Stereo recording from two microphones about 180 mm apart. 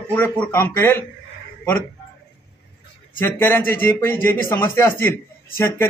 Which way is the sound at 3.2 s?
10° left (ahead or behind).